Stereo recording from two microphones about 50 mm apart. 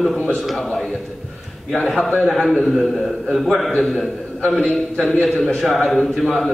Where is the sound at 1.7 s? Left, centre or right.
Centre.